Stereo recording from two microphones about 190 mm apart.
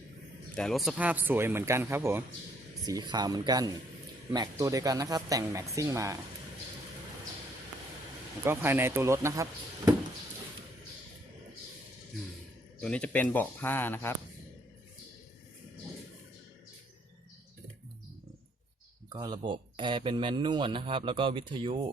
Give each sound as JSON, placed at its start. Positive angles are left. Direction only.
{"t": 0.5, "sound": "speech", "side_deg": 0}
{"t": 8.4, "sound": "speech", "side_deg": -10}
{"t": 12.8, "sound": "speech", "side_deg": 5}
{"t": 19.1, "sound": "speech", "side_deg": -20}